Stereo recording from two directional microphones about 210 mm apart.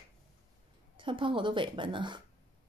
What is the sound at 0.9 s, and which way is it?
Speech, 25° right (ahead or behind).